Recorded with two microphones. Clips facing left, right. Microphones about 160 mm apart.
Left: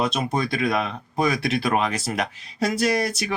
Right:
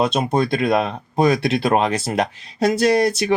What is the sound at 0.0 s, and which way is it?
Speech, 25° right (ahead or behind).